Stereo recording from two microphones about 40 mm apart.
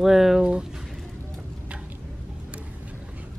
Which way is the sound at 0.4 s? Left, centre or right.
Right.